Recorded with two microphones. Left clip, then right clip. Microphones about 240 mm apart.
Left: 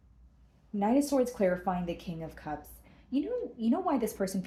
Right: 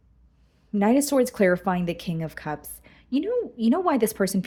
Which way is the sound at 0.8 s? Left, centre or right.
Right.